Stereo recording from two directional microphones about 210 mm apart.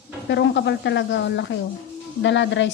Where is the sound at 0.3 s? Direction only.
55° left (ahead or behind).